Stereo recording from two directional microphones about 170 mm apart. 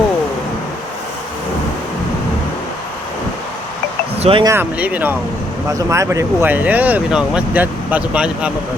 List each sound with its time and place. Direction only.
4.2 s speech: 35° right (ahead or behind)
4.4 s speech: 10° right (ahead or behind)